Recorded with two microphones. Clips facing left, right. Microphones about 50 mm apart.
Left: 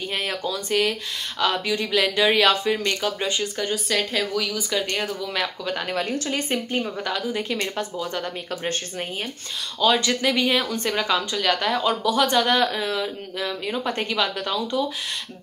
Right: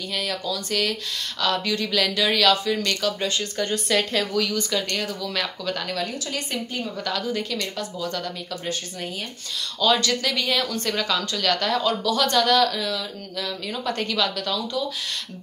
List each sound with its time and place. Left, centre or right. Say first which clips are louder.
0.1 s a woman's voice: even; left
0.7 s speech: left 4 dB; left
5.9 s a woman's voice: left 3 dB; left
7.1 s speech: left 1 dB; centre
7.5 s a woman's voice: left 2 dB; left
9.8 s speech: left 1 dB; centre